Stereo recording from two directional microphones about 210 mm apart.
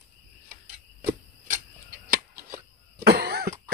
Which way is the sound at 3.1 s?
50° right (ahead or behind).